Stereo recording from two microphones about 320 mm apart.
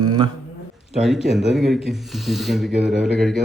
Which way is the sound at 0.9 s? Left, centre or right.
Centre.